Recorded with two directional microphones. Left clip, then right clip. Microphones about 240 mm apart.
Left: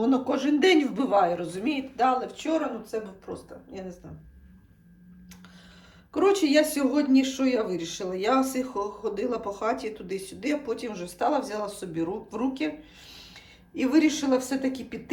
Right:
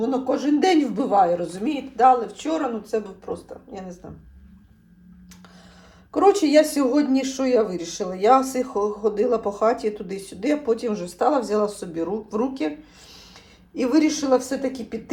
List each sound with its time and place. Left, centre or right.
0.0 s speech: centre
6.1 s speech: centre
13.7 s speech: centre